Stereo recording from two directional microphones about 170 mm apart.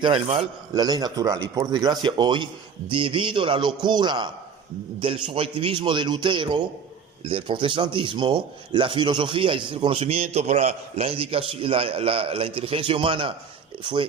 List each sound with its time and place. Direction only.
0.0 s a man's voice: 35° right (ahead or behind)
0.7 s a man's voice: 25° right (ahead or behind)